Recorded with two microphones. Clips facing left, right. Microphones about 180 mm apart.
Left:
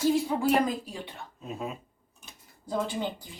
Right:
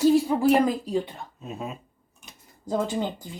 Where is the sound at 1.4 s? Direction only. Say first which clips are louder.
Right 1 dB; centre (ahead or behind).